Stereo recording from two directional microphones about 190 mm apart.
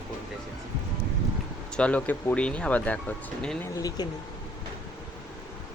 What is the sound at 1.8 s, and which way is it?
Speech, 5° left (ahead or behind).